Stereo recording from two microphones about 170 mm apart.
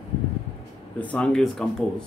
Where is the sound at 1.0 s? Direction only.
5° left (ahead or behind).